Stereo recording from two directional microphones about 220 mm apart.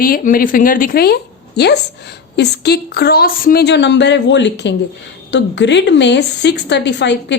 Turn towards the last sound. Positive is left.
turn(degrees=50)  # may be behind; listen again after turning